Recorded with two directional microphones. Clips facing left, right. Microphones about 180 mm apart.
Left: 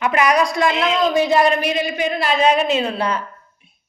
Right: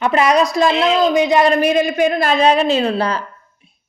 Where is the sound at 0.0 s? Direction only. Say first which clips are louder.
Right 3 dB; 25° right (ahead or behind).